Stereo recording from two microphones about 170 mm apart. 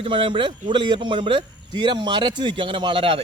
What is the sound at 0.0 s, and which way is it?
A man's voice, 30° right (ahead or behind).